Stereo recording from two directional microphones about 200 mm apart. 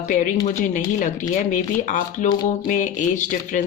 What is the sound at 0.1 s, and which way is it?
Speech, 40° left (ahead or behind).